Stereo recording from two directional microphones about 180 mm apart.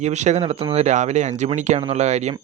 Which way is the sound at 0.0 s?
40° right (ahead or behind).